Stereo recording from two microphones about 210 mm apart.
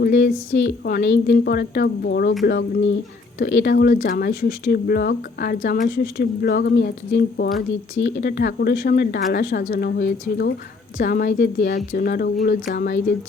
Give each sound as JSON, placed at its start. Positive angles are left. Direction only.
{"t": 0.0, "sound": "speech", "side_deg": 50}